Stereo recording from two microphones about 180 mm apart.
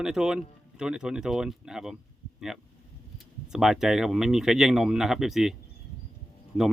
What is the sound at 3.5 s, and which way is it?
Speech, centre (ahead or behind).